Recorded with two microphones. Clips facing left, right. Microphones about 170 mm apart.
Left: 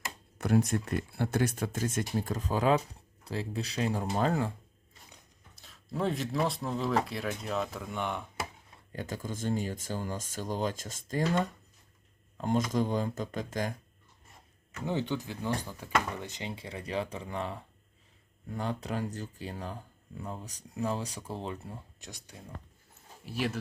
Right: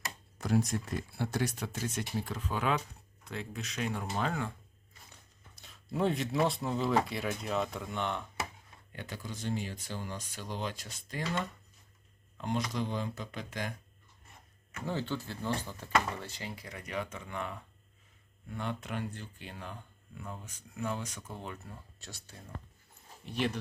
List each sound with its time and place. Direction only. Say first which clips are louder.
0.3 s speech: left 3 dB; 60° left (ahead or behind); by 4.5 s 35° left (ahead or behind)
5.5 s speech: right 1 dB; centre (ahead or behind)
8.9 s speech: left 5 dB; 40° left (ahead or behind)
14.8 s speech: left 3 dB; 15° left (ahead or behind)
22.0 s speech: left 2 dB; 15° left (ahead or behind)
23.2 s speech: even; 5° left (ahead or behind)